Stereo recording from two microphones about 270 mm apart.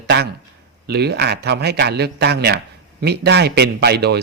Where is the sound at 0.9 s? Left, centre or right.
Right.